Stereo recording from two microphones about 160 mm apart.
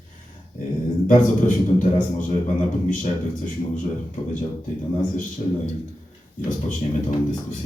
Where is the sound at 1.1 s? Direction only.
55° left (ahead or behind).